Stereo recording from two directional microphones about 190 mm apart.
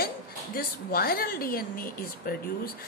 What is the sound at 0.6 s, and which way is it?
A woman's voice, 55° left (ahead or behind).